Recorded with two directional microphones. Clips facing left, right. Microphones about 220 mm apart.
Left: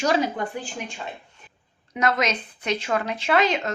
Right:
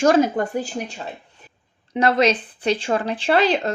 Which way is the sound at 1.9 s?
30° right (ahead or behind).